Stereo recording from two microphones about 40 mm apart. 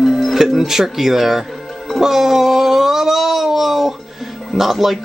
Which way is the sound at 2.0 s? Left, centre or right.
Centre.